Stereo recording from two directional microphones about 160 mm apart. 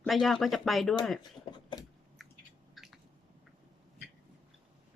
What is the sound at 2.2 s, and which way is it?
Owl, centre (ahead or behind).